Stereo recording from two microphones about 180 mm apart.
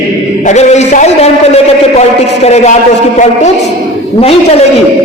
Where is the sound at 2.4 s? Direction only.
35° left (ahead or behind).